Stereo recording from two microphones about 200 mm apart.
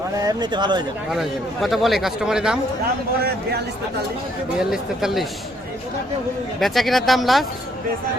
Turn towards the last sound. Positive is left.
turn(degrees=0)  # may be behind; listen again after turning